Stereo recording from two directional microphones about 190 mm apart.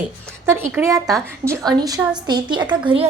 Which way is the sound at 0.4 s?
15° right (ahead or behind).